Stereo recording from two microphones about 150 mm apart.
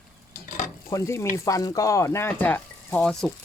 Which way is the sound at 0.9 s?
20° left (ahead or behind).